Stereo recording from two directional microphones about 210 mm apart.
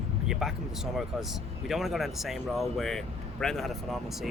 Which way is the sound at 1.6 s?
Centre (ahead or behind).